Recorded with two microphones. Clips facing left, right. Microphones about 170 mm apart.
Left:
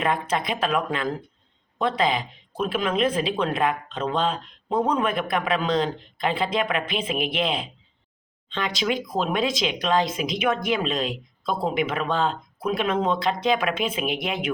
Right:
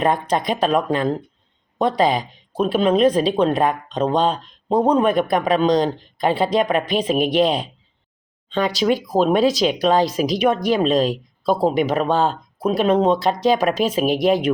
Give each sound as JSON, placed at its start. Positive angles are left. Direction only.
{"t": 0.0, "sound": "speech", "side_deg": -35}